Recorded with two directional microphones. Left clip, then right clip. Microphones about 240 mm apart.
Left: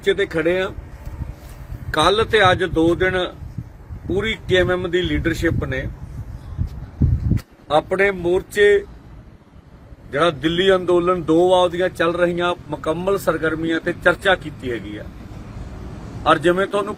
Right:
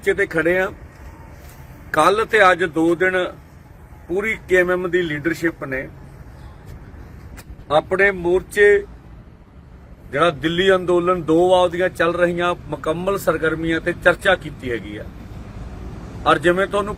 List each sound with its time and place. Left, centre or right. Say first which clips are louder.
0.0 s speech: even; centre
2.0 s speech: right 1 dB; centre
5.0 s speech: left 1 dB; left
7.9 s speech: right 1 dB; left
10.1 s speech: even; centre
12.8 s a man's voice: even; centre
16.2 s a man's voice: even; centre